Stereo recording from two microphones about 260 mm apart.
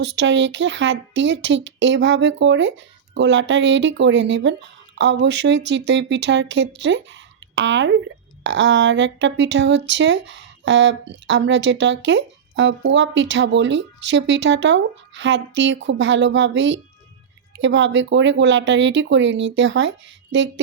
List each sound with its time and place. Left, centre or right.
0.2 s speech: right